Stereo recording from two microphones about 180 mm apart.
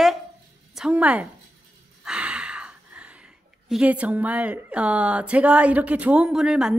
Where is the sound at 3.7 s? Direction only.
5° right (ahead or behind).